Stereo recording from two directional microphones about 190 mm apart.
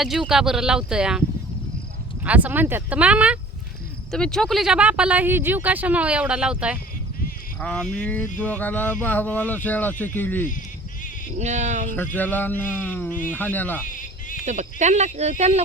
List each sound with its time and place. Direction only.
0.0 s speech: centre (ahead or behind)
2.2 s speech: 10° right (ahead or behind)
7.6 s speech: 5° left (ahead or behind)
11.3 s speech: 40° right (ahead or behind)
12.1 s speech: 10° left (ahead or behind)
13.8 s music: 45° left (ahead or behind)
14.4 s speech: 40° right (ahead or behind)